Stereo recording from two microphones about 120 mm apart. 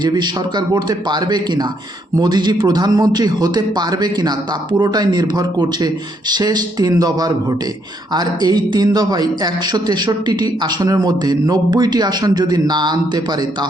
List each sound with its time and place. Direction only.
0.0 s a man's voice: 35° right (ahead or behind)